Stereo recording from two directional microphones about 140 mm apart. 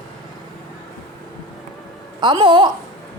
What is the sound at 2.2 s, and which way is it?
Speech, 35° right (ahead or behind).